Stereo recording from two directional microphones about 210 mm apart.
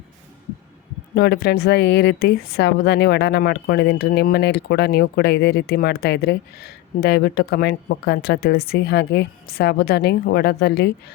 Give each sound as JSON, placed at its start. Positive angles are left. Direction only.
{"t": 1.1, "sound": "a woman's voice", "side_deg": 50}